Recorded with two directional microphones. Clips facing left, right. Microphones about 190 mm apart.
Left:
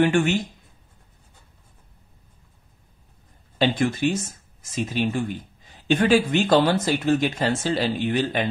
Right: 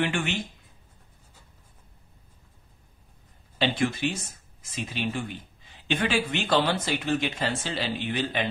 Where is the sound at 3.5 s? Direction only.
45° left (ahead or behind).